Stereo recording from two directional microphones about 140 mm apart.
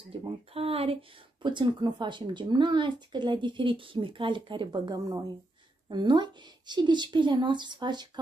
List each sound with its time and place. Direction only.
0.2 s speech: 45° right (ahead or behind)